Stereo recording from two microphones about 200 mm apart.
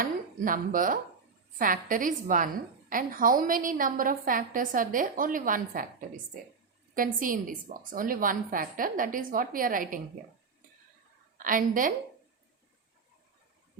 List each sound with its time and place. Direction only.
0.0 s dishes: 45° right (ahead or behind)
1.5 s a woman's voice: 45° right (ahead or behind)
11.3 s a woman's voice: 40° right (ahead or behind)